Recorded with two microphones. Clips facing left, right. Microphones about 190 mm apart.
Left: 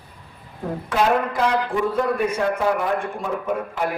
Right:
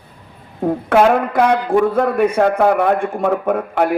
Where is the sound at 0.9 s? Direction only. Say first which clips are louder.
Right 6 dB; 60° right (ahead or behind).